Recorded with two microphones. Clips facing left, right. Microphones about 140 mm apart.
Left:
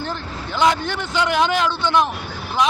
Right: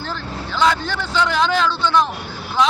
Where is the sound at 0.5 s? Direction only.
20° left (ahead or behind).